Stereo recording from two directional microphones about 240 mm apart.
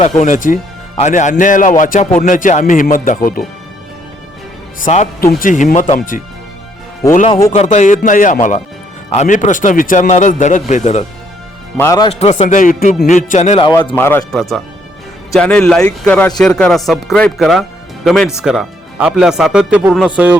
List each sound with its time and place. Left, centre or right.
0.0 s a man's voice: left
4.8 s a man's voice: left
7.3 s a man's voice: centre
7.5 s a man's voice: left
11.8 s a man's voice: centre
12.0 s speech: left
13.9 s speech: centre